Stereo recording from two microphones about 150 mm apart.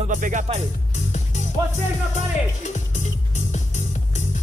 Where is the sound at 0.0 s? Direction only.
55° right (ahead or behind).